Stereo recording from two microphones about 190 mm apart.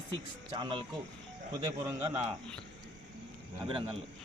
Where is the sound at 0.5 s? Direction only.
25° right (ahead or behind).